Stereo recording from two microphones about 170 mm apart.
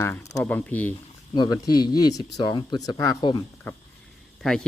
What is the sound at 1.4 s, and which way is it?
Speech, 25° left (ahead or behind).